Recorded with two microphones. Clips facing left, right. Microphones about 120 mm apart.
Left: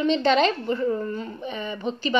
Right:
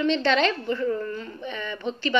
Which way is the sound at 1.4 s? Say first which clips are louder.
Left 1 dB; 15° left (ahead or behind).